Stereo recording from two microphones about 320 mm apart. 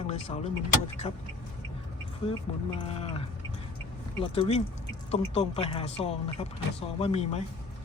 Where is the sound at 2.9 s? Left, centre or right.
Centre.